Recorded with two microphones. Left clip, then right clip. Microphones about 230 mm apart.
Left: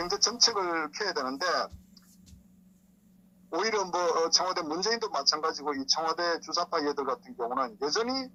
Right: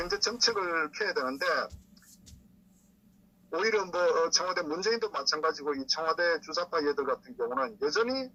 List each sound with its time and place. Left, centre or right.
0.0 s a man's voice: left
3.5 s a man's voice: left